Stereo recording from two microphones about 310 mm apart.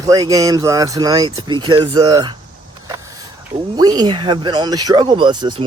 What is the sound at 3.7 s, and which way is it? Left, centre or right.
Speech, centre.